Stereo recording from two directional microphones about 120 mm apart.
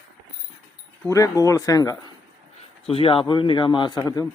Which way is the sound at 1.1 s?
25° left (ahead or behind).